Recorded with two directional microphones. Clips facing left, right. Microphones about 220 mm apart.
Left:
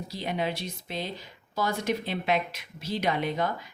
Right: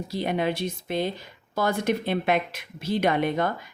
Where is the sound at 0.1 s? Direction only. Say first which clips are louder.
Right 5 dB; 55° right (ahead or behind).